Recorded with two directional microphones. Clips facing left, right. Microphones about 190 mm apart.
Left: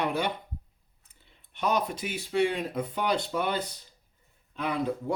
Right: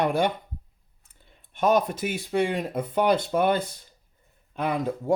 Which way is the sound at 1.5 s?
50° right (ahead or behind).